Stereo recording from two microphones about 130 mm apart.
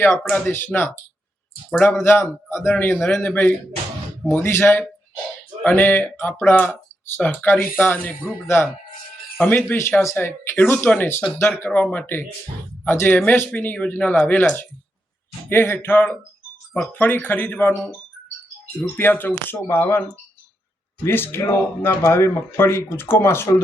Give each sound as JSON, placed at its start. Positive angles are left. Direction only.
{"t": 0.0, "sound": "speech", "side_deg": 10}
{"t": 18.9, "sound": "speech", "side_deg": 15}